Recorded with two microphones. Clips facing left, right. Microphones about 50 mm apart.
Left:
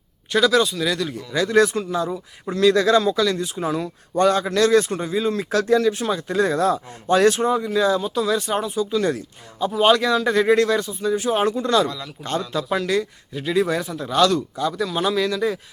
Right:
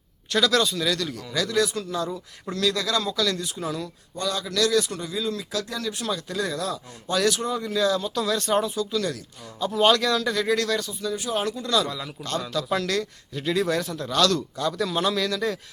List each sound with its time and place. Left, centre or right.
0.3 s speech: centre
1.5 s speech: left
1.8 s speech: left
4.1 s speech: left
7.6 s speech: left
8.7 s speech: left
9.6 s speech: centre
10.3 s speech: left
12.5 s speech: centre